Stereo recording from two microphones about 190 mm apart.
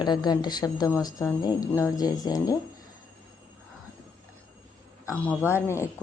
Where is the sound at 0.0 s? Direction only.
20° left (ahead or behind).